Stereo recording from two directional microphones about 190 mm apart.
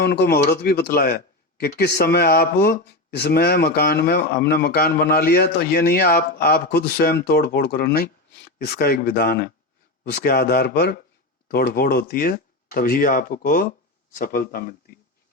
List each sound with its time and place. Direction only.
0.0 s speech: 55° left (ahead or behind)